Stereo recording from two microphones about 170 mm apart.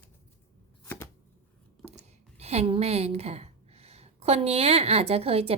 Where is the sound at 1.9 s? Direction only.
40° right (ahead or behind).